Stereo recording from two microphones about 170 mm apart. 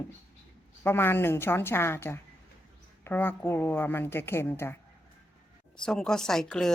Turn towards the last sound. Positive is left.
turn(degrees=5)  # may be behind; listen again after turning